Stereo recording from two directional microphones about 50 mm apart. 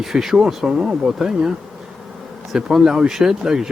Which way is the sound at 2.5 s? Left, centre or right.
Centre.